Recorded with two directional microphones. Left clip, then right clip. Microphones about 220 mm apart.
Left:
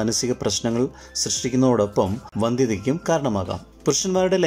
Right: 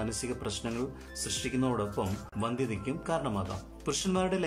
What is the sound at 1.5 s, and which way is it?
Speech, 35° left (ahead or behind).